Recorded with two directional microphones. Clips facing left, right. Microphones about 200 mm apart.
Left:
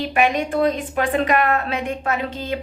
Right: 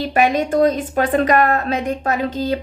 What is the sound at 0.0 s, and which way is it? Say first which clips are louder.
A woman's voice: right 3 dB; 40° right (ahead or behind).